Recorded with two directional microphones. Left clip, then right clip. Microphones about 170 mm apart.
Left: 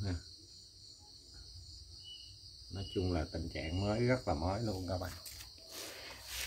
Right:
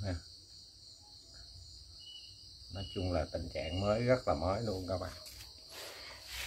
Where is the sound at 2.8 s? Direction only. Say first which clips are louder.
Right 1 dB; centre (ahead or behind).